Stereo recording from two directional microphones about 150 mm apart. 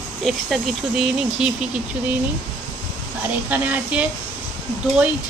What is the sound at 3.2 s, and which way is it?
Speech, 10° right (ahead or behind).